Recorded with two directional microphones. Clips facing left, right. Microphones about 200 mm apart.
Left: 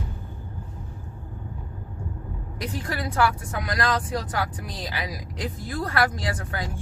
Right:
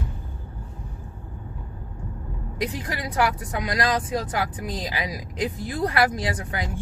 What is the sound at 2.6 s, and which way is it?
Speech, 15° right (ahead or behind).